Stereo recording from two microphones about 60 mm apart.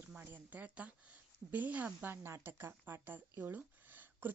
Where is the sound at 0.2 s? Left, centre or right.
Right.